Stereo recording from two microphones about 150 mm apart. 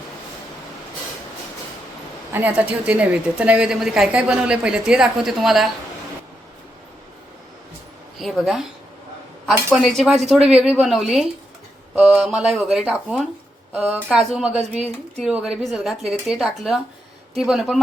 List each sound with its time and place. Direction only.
2.3 s a woman's voice: 10° right (ahead or behind)
8.2 s speech: centre (ahead or behind)
9.7 s speech: 5° left (ahead or behind)